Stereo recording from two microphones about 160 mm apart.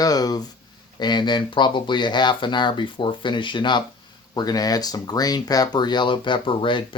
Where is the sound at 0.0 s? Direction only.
25° left (ahead or behind).